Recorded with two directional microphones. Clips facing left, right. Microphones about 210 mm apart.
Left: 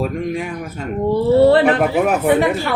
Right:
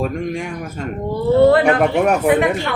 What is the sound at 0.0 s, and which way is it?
Speech, centre (ahead or behind).